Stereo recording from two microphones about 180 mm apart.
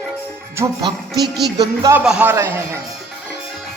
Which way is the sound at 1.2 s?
65° right (ahead or behind).